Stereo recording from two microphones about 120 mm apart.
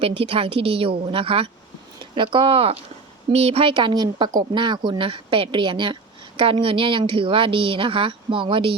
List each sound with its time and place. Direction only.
0.0 s a woman's voice: 50° right (ahead or behind)